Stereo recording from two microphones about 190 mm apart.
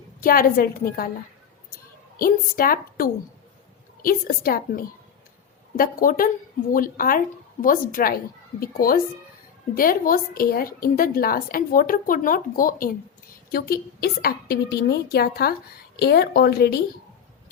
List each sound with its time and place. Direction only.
0.2 s a woman's voice: 50° left (ahead or behind)
2.1 s a woman's voice: 50° left (ahead or behind)
5.7 s a woman's voice: 50° left (ahead or behind)